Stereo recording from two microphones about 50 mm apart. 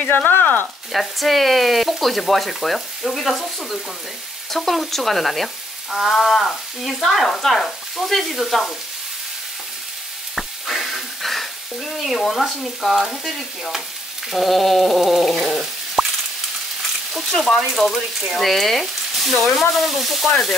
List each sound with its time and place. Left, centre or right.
0.0 s speech: left
0.9 s speech: centre
10.3 s frying: centre
14.3 s speech: centre
17.1 s speech: centre